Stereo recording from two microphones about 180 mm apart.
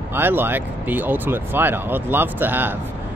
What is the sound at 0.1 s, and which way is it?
Speech, 10° right (ahead or behind).